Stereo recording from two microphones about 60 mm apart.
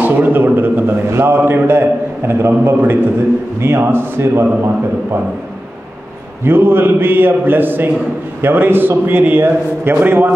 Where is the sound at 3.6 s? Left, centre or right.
Right.